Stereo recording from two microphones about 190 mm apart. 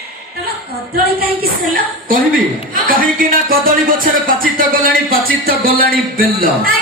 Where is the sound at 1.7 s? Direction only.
50° right (ahead or behind).